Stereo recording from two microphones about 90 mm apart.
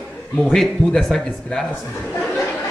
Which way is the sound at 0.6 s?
5° left (ahead or behind).